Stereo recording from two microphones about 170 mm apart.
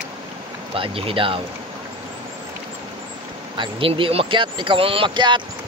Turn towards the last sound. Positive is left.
turn(degrees=-25)  # may be behind; listen again after turning